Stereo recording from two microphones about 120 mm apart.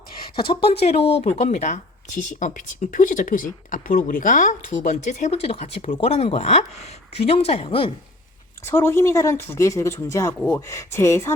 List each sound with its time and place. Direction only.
0.4 s speech: 50° left (ahead or behind)
1.4 s speech: 75° left (ahead or behind); by 7.9 s 50° left (ahead or behind)
8.6 s speech: 20° left (ahead or behind)